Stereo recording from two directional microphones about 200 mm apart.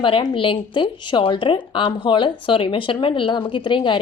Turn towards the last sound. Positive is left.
turn(degrees=25)  # may be behind; listen again after turning